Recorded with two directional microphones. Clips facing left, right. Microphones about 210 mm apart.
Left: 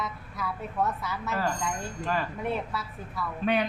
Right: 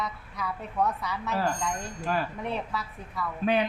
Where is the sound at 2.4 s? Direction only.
Centre (ahead or behind).